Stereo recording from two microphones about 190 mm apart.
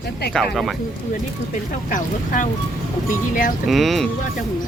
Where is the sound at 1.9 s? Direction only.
45° left (ahead or behind).